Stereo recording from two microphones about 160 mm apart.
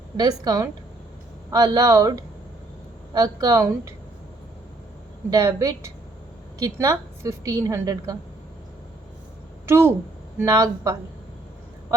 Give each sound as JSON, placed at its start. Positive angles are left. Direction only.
{"t": 0.2, "sound": "a woman's voice", "side_deg": -25}
{"t": 5.3, "sound": "a woman's voice", "side_deg": -20}
{"t": 9.6, "sound": "a woman's voice", "side_deg": -15}